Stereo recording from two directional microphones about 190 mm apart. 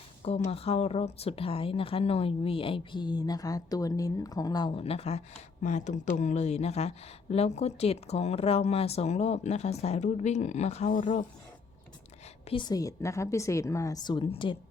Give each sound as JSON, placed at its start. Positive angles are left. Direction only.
{"t": 0.5, "sound": "speech", "side_deg": 30}
{"t": 12.5, "sound": "speech", "side_deg": 25}